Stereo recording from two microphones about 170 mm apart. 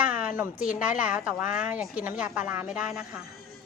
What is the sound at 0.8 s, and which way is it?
A woman's voice, 10° right (ahead or behind).